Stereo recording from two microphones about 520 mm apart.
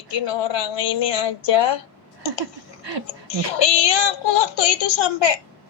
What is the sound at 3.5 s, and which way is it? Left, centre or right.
A woman's voice, left.